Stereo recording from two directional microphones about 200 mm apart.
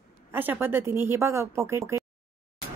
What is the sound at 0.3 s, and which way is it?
A woman's voice, 10° right (ahead or behind).